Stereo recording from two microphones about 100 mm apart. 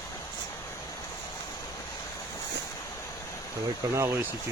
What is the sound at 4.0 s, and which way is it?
Speech, 25° right (ahead or behind).